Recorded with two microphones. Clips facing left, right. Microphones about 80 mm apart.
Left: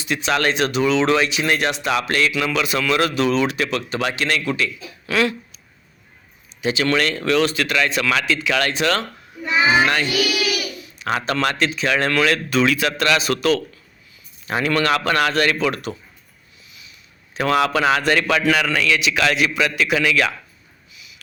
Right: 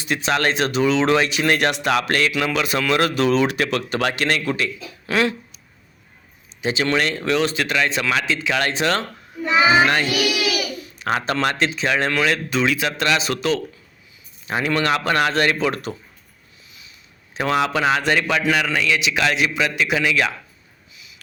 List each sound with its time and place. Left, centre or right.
0.0 s speech: right
6.6 s a man's voice: right
17.3 s a man's voice: right
20.9 s a sound: right